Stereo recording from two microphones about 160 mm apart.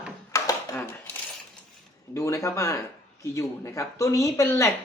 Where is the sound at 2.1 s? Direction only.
20° left (ahead or behind).